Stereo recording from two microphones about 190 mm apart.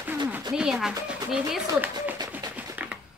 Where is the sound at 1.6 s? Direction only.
15° right (ahead or behind).